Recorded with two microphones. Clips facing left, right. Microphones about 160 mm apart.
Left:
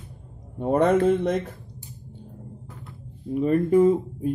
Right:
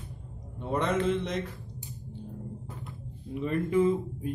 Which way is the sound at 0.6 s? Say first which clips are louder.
Left 9 dB; 50° left (ahead or behind).